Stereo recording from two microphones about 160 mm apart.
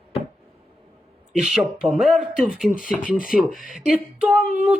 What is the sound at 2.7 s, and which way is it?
Speech, 60° left (ahead or behind).